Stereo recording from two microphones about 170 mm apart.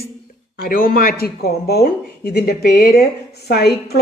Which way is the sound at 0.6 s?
55° left (ahead or behind).